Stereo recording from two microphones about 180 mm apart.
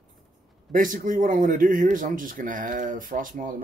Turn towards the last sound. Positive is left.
turn(degrees=-50)  # may be behind; listen again after turning